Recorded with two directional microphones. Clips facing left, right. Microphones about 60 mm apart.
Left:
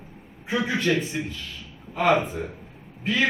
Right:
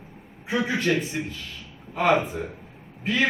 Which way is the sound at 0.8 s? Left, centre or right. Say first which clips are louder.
Even; right.